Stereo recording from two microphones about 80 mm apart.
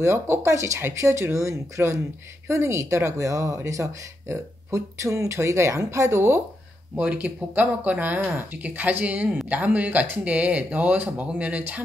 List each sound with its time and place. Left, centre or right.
0.0 s speech: right
7.0 s speech: centre